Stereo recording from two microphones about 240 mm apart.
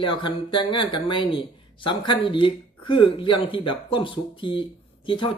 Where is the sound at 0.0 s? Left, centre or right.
Centre.